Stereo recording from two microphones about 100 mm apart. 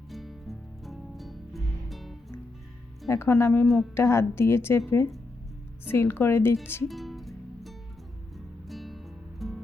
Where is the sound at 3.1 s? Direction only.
25° left (ahead or behind).